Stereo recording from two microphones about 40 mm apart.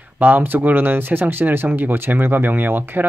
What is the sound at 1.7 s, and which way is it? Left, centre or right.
Speech, right.